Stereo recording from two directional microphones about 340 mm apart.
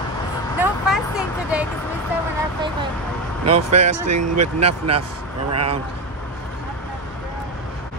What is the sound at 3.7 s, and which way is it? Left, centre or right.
Speech, right.